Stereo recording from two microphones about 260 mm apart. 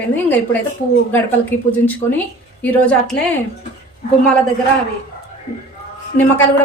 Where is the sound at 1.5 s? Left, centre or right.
Centre.